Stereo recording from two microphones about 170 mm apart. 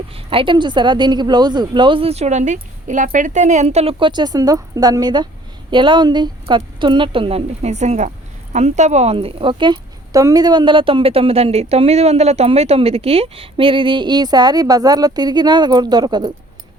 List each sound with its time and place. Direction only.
0.1 s a woman's voice: 30° right (ahead or behind)